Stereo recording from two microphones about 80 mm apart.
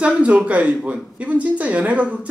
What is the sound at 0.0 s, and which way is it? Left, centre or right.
Speech, centre.